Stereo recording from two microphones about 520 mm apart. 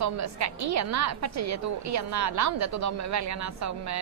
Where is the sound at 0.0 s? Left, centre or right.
Right.